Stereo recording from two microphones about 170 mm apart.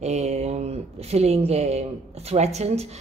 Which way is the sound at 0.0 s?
40° right (ahead or behind).